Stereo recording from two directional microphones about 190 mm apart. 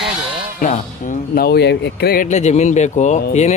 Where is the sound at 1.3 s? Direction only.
55° left (ahead or behind); by 3.5 s 35° left (ahead or behind).